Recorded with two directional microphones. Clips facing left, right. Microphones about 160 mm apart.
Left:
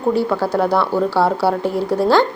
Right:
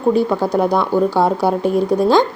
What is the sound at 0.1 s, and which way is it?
A woman's voice, 20° right (ahead or behind).